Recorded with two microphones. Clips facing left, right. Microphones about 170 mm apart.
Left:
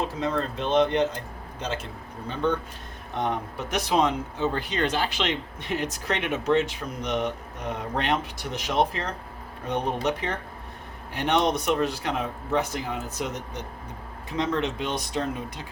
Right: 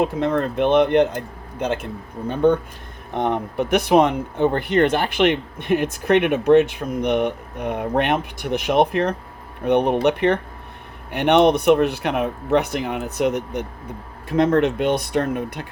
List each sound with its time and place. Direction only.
0.0 s speech: 60° right (ahead or behind)